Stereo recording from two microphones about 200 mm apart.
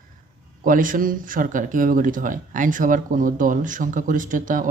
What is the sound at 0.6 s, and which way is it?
Speech, 40° right (ahead or behind).